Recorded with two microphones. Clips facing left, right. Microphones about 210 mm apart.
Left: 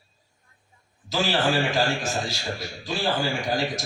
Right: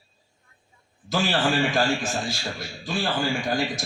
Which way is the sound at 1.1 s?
50° right (ahead or behind).